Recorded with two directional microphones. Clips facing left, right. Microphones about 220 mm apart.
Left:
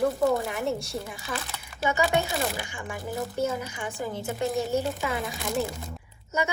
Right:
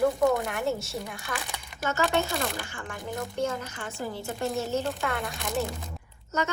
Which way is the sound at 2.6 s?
15° left (ahead or behind).